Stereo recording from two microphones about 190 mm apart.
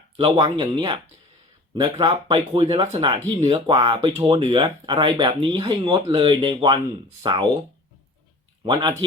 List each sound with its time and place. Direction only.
0.2 s speech: 25° right (ahead or behind)
8.6 s speech: 25° right (ahead or behind)